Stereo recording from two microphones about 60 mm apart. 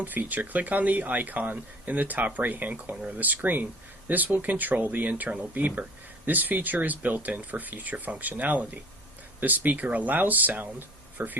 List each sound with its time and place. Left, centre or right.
0.0 s speech: right